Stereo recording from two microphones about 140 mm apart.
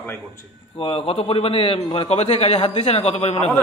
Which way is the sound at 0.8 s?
40° left (ahead or behind).